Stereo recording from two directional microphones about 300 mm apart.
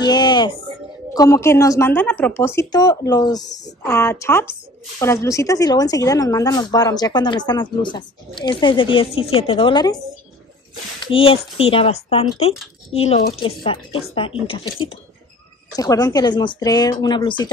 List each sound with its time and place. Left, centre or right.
0.0 s a sound: centre
1.1 s speech: centre
11.1 s speech: centre